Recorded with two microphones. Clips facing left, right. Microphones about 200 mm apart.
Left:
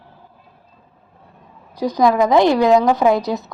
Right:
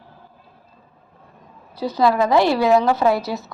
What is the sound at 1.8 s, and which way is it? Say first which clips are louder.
A woman's voice: left 3 dB; 15° left (ahead or behind).